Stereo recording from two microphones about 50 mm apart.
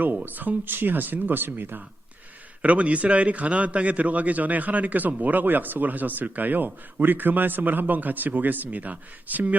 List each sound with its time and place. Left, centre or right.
0.3 s a man's voice: right
2.6 s a man's voice: right